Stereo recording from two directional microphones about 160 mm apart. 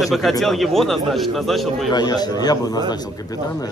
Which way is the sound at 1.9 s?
25° left (ahead or behind).